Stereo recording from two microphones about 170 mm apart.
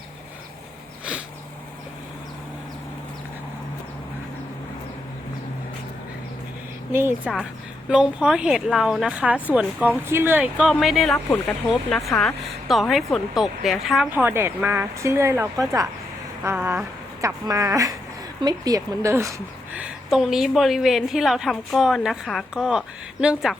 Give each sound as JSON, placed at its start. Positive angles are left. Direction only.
{"t": 6.9, "sound": "speech", "side_deg": -15}
{"t": 19.7, "sound": "speech", "side_deg": -5}